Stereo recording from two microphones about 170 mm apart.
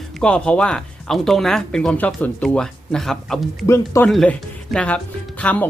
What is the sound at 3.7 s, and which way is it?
Speech, 15° left (ahead or behind).